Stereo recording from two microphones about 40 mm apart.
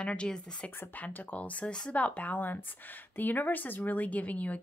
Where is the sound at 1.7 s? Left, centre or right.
Left.